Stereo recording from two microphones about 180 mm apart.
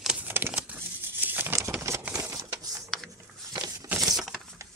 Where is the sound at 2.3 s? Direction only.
20° right (ahead or behind).